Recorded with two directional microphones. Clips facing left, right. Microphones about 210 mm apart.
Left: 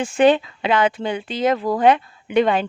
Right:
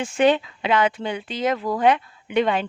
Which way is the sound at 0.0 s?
35° left (ahead or behind).